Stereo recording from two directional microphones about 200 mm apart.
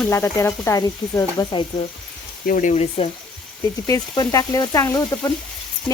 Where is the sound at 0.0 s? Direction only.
10° left (ahead or behind).